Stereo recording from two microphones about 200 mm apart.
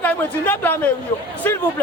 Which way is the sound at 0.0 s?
10° left (ahead or behind).